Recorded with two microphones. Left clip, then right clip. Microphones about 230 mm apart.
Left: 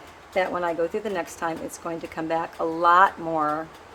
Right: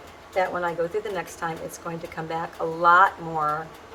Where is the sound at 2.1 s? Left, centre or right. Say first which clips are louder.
Left 4 dB; left.